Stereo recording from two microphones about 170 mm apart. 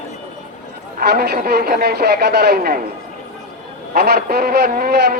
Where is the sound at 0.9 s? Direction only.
65° right (ahead or behind).